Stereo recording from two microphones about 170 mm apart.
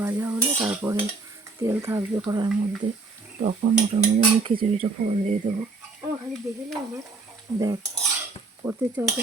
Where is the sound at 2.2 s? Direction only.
25° right (ahead or behind).